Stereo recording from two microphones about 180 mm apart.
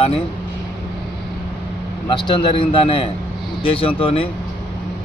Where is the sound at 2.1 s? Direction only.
25° left (ahead or behind).